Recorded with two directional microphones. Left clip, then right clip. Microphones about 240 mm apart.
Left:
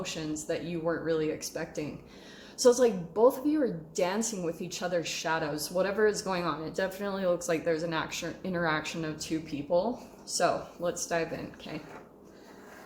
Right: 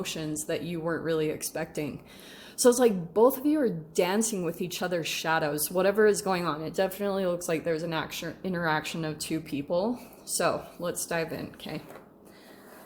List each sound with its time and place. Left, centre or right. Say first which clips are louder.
0.0 s a woman's voice: right 2 dB; right